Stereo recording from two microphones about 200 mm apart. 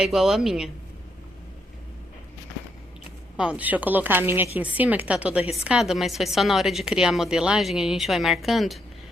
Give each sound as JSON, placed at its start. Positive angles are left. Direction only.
{"t": 0.0, "sound": "a woman's voice", "side_deg": 0}
{"t": 3.3, "sound": "a woman's voice", "side_deg": -5}